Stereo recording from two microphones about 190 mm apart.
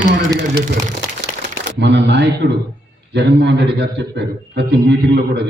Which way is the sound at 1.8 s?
65° right (ahead or behind).